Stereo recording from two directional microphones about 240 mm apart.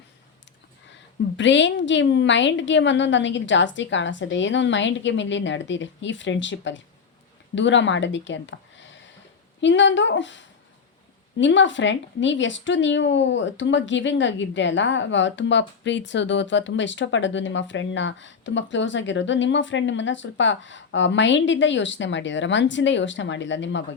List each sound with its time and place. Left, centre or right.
1.4 s a woman's voice: left